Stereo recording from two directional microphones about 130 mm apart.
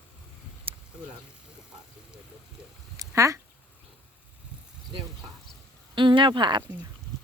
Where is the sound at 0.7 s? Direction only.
45° right (ahead or behind).